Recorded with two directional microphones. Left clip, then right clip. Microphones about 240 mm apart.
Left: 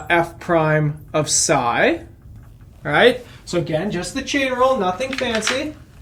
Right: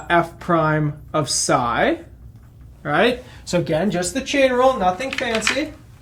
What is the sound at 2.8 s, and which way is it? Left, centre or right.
Speech, right.